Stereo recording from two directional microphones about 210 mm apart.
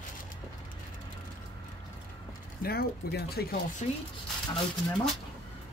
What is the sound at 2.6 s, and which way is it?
Speech, 45° left (ahead or behind).